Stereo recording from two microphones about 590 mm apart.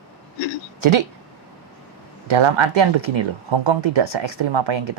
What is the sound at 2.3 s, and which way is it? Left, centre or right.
Speech, right.